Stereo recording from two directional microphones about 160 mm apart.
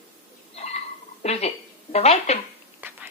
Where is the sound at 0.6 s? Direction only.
45° left (ahead or behind).